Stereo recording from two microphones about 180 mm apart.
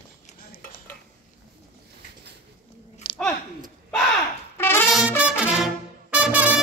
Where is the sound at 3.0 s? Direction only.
30° left (ahead or behind).